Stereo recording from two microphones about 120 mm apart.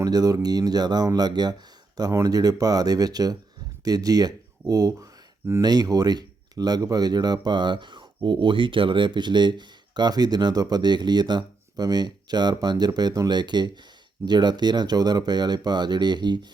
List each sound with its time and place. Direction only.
0.0 s speech: 30° right (ahead or behind)